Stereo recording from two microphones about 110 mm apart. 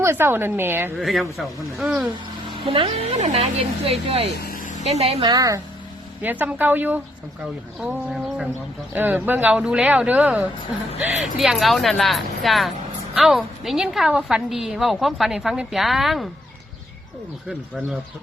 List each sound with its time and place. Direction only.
0.0 s a woman's voice: 20° right (ahead or behind)
0.9 s a woman's voice: centre (ahead or behind)
2.6 s speech: 55° right (ahead or behind)
4.8 s speech: 75° right (ahead or behind)
5.2 s speech: 35° right (ahead or behind)
6.2 s speech: 15° right (ahead or behind)
7.8 s a woman's voice: 5° right (ahead or behind)
9.0 s a woman's voice: 15° right (ahead or behind)